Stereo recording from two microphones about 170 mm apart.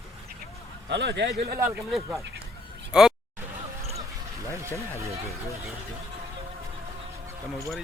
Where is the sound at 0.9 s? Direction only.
90° right.